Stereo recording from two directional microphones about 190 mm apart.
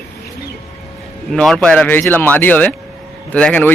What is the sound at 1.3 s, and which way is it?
Speech, 5° left (ahead or behind).